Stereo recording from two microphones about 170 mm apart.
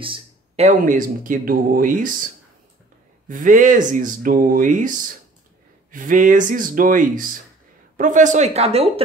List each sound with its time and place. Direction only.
0.0 s a sound: 30° right (ahead or behind)
0.7 s speech: 50° right (ahead or behind)
3.3 s speech: 50° right (ahead or behind)